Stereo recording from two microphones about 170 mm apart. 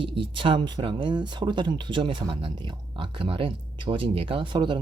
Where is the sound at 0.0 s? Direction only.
30° right (ahead or behind).